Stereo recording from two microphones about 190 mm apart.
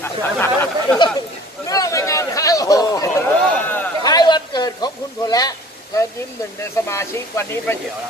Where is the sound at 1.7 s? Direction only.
15° left (ahead or behind).